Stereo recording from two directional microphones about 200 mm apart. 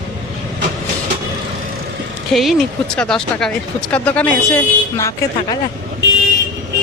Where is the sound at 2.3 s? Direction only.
Centre (ahead or behind).